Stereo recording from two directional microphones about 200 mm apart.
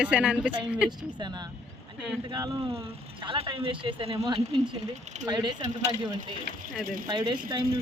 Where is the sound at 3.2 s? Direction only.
25° right (ahead or behind).